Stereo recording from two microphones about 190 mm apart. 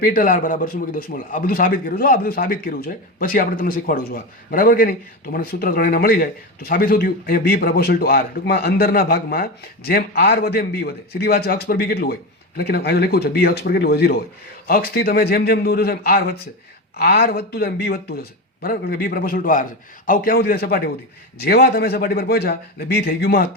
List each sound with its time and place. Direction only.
0.0 s a man's voice: 45° left (ahead or behind)